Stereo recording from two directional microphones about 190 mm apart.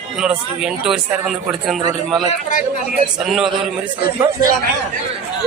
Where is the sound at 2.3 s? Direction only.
40° left (ahead or behind).